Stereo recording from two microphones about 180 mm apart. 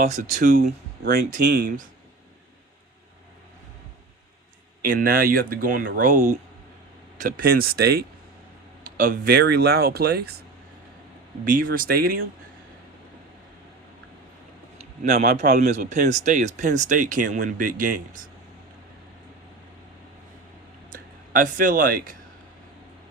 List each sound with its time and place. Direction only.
0.2 s speech: 45° right (ahead or behind)
1.0 s speech: 65° right (ahead or behind)
4.8 s speech: 50° right (ahead or behind)
11.4 s speech: 50° right (ahead or behind)
15.1 s speech: 55° right (ahead or behind)
20.9 s speech: 45° right (ahead or behind)